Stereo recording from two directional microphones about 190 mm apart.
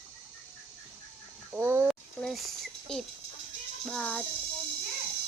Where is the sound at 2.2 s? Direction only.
Centre (ahead or behind).